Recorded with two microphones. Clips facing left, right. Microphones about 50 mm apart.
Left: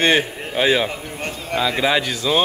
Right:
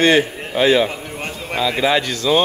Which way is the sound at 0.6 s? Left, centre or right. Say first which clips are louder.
Right 3 dB; centre.